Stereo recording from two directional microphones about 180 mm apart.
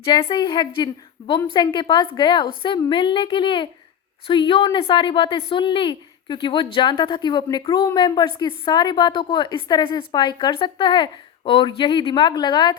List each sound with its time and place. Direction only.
0.0 s a woman's voice: 30° left (ahead or behind)